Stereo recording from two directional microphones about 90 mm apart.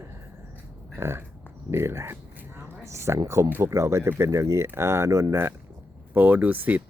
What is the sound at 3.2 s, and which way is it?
Speech, 30° right (ahead or behind).